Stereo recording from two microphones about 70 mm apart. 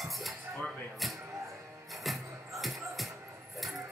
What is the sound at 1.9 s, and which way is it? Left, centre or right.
Music, centre.